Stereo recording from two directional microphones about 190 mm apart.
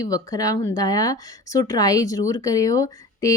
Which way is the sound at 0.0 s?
20° left (ahead or behind).